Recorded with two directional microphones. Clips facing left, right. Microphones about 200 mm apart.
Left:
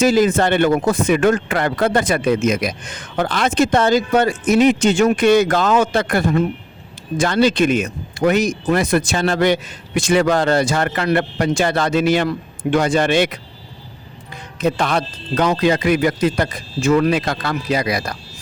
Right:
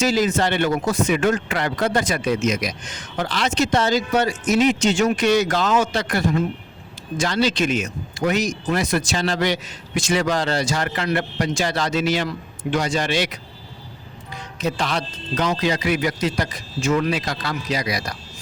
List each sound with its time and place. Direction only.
0.0 s speech: 55° left (ahead or behind)
14.6 s speech: 55° left (ahead or behind)